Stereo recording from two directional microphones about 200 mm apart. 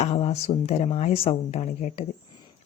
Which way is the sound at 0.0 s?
30° left (ahead or behind).